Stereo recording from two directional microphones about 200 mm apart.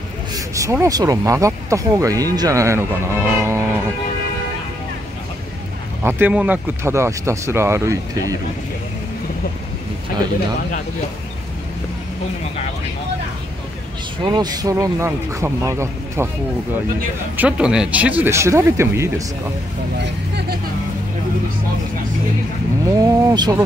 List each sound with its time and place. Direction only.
0.3 s speech: 15° right (ahead or behind)
6.0 s speech: 10° right (ahead or behind)
14.2 s speech: 20° right (ahead or behind)
17.4 s speech: 5° right (ahead or behind)
20.0 s speech: 55° right (ahead or behind)
22.9 s speech: 20° right (ahead or behind)